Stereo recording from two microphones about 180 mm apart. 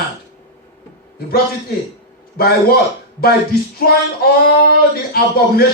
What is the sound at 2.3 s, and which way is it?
A man's voice, 60° left (ahead or behind).